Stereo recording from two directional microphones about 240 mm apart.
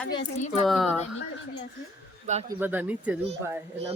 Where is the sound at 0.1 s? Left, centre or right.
Left.